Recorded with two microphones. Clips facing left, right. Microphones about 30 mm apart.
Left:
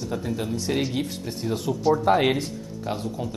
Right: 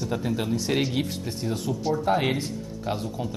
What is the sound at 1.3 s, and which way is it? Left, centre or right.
Speech, centre.